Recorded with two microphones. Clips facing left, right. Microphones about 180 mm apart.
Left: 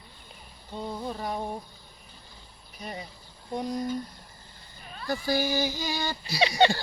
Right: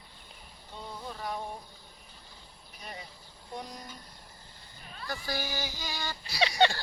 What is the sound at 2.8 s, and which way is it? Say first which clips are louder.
Speech: left 6 dB; 25° left (ahead or behind).